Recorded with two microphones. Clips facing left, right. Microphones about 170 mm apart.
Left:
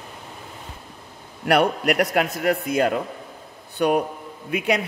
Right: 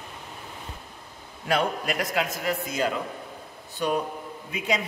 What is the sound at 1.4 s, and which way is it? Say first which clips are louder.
A man's voice: left 7 dB; 70° left (ahead or behind).